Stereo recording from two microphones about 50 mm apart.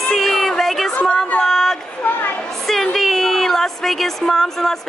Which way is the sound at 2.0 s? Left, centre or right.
Left.